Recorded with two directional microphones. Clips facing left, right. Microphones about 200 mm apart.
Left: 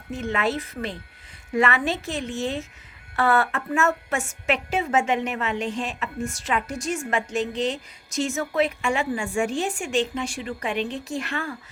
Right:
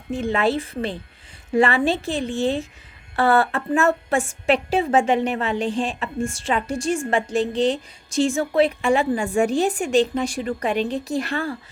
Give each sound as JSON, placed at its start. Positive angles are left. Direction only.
{"t": 0.1, "sound": "a woman's voice", "side_deg": -30}